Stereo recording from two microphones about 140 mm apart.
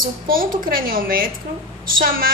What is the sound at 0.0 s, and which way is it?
A woman's voice, 85° right.